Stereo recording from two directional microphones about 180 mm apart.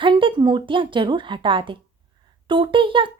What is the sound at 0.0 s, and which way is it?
Speech, 25° right (ahead or behind).